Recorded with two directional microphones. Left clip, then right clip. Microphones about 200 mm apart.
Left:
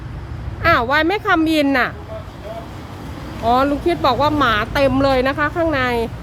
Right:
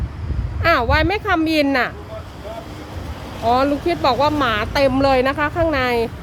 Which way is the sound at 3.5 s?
Centre (ahead or behind).